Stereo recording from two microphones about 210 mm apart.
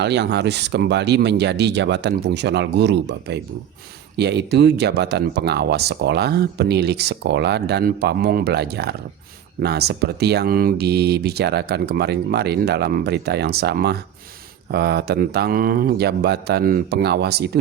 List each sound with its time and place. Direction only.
0.0 s speech: 55° right (ahead or behind)